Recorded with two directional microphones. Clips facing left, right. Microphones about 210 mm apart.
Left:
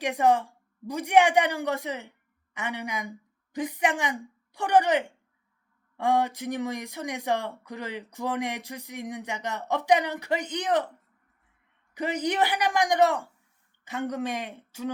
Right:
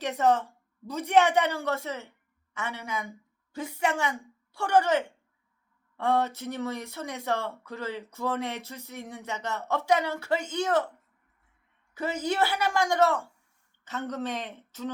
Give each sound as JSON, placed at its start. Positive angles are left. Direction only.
{"t": 0.0, "sound": "a woman's voice", "side_deg": 10}
{"t": 11.9, "sound": "speech", "side_deg": 15}